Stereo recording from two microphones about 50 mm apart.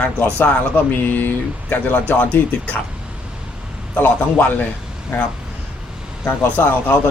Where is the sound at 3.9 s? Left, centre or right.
Left.